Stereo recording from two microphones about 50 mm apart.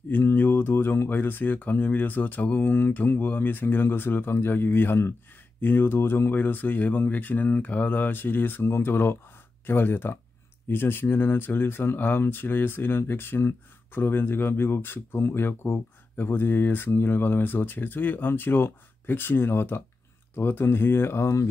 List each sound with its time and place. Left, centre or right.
0.1 s speech: left